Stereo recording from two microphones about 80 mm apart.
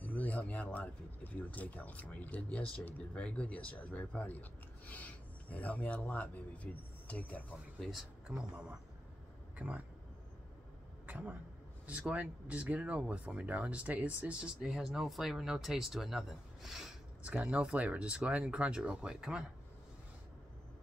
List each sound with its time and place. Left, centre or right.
0.0 s speech: left
7.8 s speech: centre
8.4 s speech: centre
11.1 s speech: centre
17.3 s speech: centre